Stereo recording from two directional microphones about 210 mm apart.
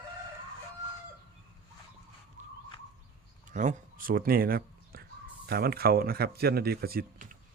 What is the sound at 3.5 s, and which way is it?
Speech, 40° right (ahead or behind).